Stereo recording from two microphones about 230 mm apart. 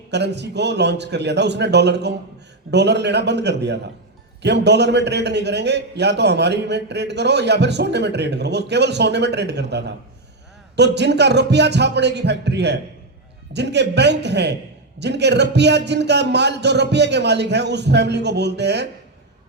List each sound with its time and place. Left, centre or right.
0.1 s a man's voice: right